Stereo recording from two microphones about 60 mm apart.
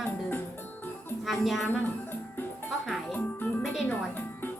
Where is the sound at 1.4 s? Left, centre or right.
Centre.